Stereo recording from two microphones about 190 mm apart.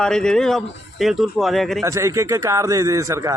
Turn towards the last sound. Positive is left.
turn(degrees=-15)  # may be behind; listen again after turning